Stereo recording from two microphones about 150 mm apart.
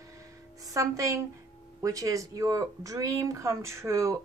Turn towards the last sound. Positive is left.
turn(degrees=-20)  # may be behind; listen again after turning